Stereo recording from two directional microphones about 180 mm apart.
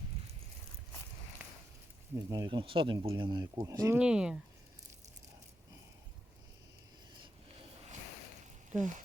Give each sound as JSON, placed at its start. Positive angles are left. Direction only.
{"t": 2.3, "sound": "speech", "side_deg": -20}
{"t": 3.9, "sound": "speech", "side_deg": -5}
{"t": 8.7, "sound": "speech", "side_deg": -45}